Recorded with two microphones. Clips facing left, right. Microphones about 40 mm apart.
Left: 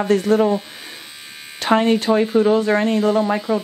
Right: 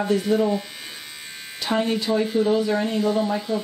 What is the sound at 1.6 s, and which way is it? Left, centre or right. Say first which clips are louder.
Speech: left 7 dB; left.